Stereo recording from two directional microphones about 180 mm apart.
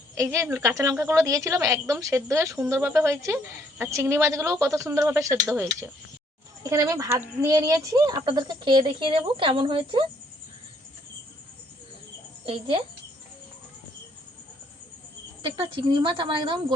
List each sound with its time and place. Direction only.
0.2 s a woman's voice: 15° right (ahead or behind)
12.5 s speech: 30° right (ahead or behind)
15.4 s speech: 30° right (ahead or behind)